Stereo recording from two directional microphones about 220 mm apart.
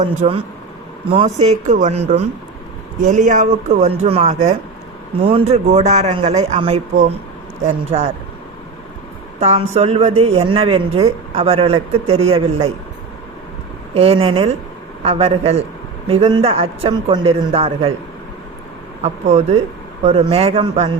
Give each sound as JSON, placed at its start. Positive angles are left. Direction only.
{"t": 0.0, "sound": "speech", "side_deg": -30}
{"t": 9.4, "sound": "speech", "side_deg": -30}
{"t": 13.9, "sound": "speech", "side_deg": -25}
{"t": 19.0, "sound": "speech", "side_deg": -30}